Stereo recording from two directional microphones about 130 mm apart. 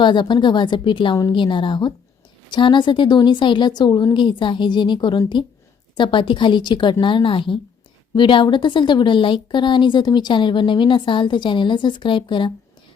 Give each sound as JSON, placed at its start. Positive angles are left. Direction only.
{"t": 0.0, "sound": "a woman's voice", "side_deg": 35}